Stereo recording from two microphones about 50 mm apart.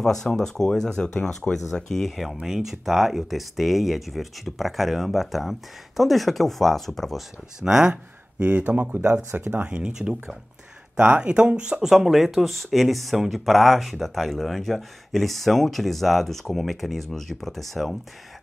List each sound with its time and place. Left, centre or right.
0.0 s speech: centre
7.6 s speech: centre
8.5 s speech: right
9.3 s speech: right
9.7 s speech: right
11.9 s speech: centre